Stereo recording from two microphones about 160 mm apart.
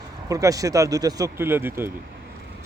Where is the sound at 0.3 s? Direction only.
20° right (ahead or behind).